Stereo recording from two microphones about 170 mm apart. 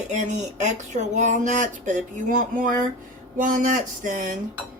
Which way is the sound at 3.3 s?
50° right (ahead or behind).